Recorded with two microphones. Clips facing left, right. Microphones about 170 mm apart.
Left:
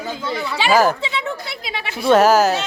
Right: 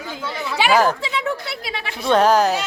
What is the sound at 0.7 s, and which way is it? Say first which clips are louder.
A man's voice: left 2 dB; 5° left (ahead or behind).